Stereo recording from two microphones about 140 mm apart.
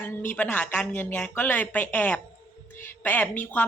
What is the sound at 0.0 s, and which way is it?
A woman's voice, 15° left (ahead or behind).